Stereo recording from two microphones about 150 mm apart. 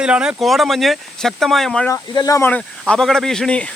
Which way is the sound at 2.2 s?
25° left (ahead or behind).